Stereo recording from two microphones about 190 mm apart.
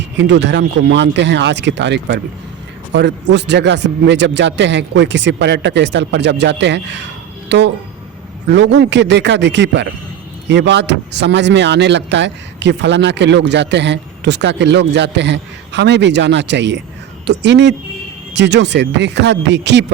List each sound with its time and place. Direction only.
0.0 s speech: 65° right (ahead or behind)